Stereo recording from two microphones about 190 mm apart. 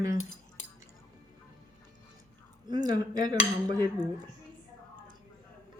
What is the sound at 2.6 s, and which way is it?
Dishes, 20° right (ahead or behind).